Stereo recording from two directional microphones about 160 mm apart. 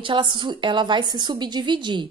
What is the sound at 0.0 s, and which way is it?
A woman's voice, 30° right (ahead or behind).